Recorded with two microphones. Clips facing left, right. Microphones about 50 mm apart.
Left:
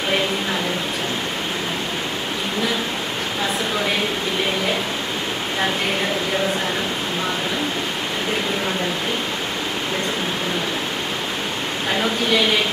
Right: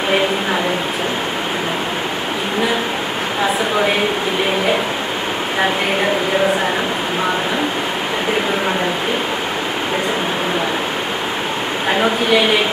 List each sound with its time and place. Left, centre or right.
11.9 s a woman's voice: right